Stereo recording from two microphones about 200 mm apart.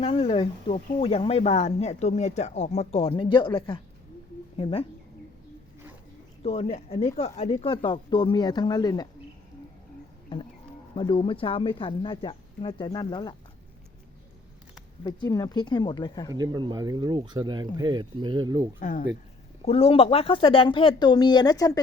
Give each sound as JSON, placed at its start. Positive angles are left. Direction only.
{"t": 0.0, "sound": "speech", "side_deg": 30}
{"t": 6.4, "sound": "speech", "side_deg": 30}
{"t": 10.9, "sound": "speech", "side_deg": 25}
{"t": 15.0, "sound": "speech", "side_deg": 20}
{"t": 16.3, "sound": "speech", "side_deg": -20}
{"t": 18.8, "sound": "speech", "side_deg": 40}